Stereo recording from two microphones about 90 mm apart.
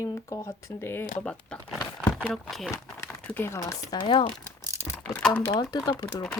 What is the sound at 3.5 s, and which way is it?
Speech, 35° left (ahead or behind).